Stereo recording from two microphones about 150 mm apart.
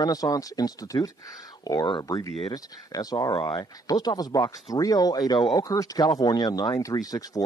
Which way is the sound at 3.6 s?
25° left (ahead or behind).